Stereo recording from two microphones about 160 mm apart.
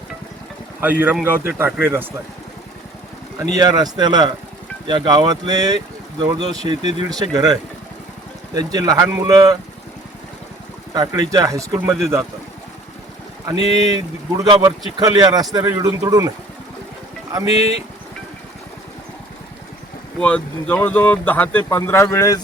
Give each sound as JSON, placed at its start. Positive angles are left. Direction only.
{"t": 0.8, "sound": "a man's voice", "side_deg": -10}
{"t": 3.3, "sound": "speech", "side_deg": -25}
{"t": 10.9, "sound": "speech", "side_deg": -25}
{"t": 14.4, "sound": "speech", "side_deg": -25}
{"t": 17.4, "sound": "speech", "side_deg": 40}
{"t": 20.1, "sound": "speech", "side_deg": 10}